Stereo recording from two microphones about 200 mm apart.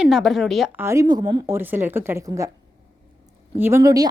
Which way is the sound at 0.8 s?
15° right (ahead or behind).